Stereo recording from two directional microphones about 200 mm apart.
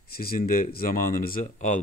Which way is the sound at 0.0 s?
50° left (ahead or behind).